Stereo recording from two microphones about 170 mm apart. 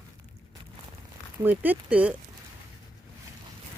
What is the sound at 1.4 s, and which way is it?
Speech, 10° right (ahead or behind).